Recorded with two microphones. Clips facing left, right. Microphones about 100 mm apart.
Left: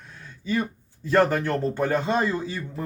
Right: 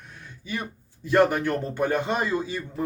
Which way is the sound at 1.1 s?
15° right (ahead or behind).